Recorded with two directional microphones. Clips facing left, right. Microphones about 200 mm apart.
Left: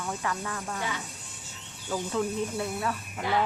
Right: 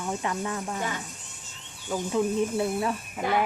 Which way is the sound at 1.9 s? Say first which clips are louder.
Right 4 dB; 25° right (ahead or behind).